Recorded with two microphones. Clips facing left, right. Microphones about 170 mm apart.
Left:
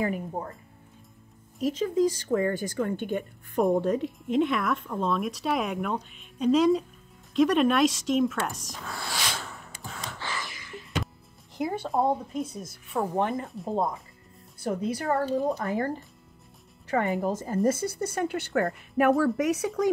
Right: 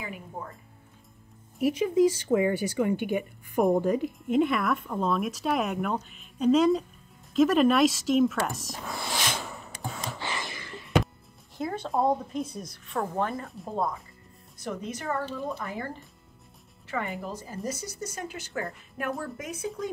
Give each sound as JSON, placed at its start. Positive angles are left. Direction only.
{"t": 0.0, "sound": "speech", "side_deg": 40}
{"t": 1.6, "sound": "speech", "side_deg": -15}
{"t": 8.8, "sound": "a sound", "side_deg": -15}
{"t": 10.1, "sound": "gasp", "side_deg": -20}
{"t": 10.6, "sound": "music", "side_deg": -65}
{"t": 11.5, "sound": "speech", "side_deg": 15}
{"t": 13.1, "sound": "speech", "side_deg": 20}
{"t": 14.9, "sound": "speech", "side_deg": 35}